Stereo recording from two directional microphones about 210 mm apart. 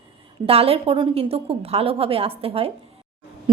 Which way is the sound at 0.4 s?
25° right (ahead or behind).